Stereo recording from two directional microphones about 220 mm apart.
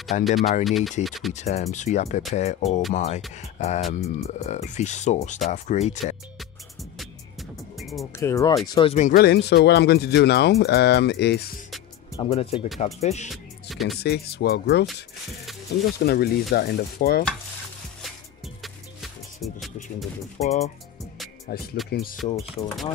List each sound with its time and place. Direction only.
0.2 s speech: centre (ahead or behind)
1.3 s speech: 30° left (ahead or behind)
6.8 s music: centre (ahead or behind)
8.0 s speech: 15° left (ahead or behind); by 11.5 s 50° left (ahead or behind)
12.2 s speech: 25° left (ahead or behind)
13.3 s music: centre (ahead or behind)
14.0 s speech: 45° left (ahead or behind)
18.6 s music: centre (ahead or behind)
20.4 s speech: 30° left (ahead or behind)
21.5 s speech: 45° left (ahead or behind)
22.2 s speech: 30° left (ahead or behind)